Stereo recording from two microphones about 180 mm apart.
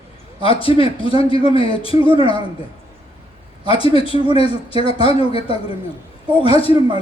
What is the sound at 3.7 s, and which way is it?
Speech, 30° left (ahead or behind).